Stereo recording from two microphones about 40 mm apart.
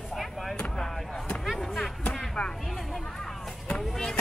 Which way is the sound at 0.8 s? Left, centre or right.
Centre.